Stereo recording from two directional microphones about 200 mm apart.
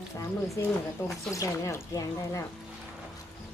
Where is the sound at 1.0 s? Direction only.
15° left (ahead or behind).